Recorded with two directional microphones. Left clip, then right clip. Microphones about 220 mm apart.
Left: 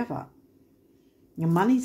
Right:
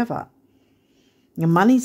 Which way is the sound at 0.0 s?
50° right (ahead or behind).